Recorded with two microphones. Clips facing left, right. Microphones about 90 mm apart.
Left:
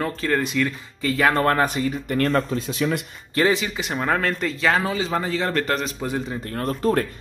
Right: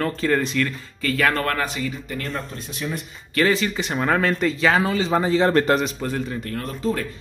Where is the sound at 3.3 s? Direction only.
20° left (ahead or behind).